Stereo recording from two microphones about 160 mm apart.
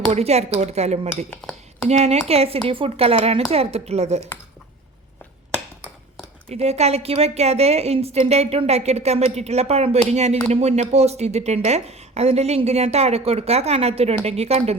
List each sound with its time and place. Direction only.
0.1 s a woman's voice: 40° right (ahead or behind)
1.3 s speech: 5° left (ahead or behind)
1.9 s speech: 40° right (ahead or behind)
6.5 s speech: 40° right (ahead or behind)